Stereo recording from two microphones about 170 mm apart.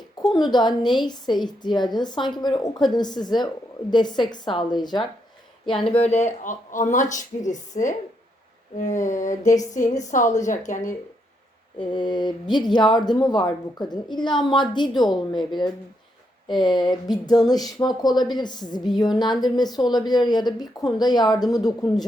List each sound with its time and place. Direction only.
0.5 s speech: 25° left (ahead or behind)
5.9 s speech: 40° left (ahead or behind)
11.8 s speech: 30° left (ahead or behind)